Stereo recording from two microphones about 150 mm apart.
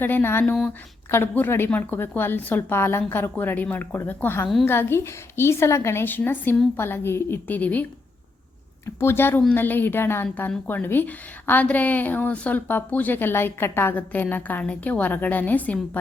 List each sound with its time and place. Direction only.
0.0 s a woman's voice: 15° left (ahead or behind)
9.0 s a woman's voice: 15° left (ahead or behind)